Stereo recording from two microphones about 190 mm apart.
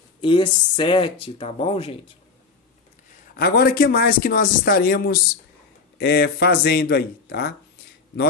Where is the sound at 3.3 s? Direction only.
50° left (ahead or behind).